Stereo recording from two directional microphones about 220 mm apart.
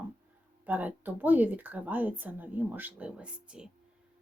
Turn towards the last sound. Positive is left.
turn(degrees=-5)  # may be behind; listen again after turning